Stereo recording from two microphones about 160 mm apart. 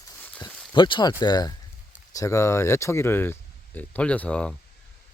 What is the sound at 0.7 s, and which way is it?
Speech, 30° left (ahead or behind).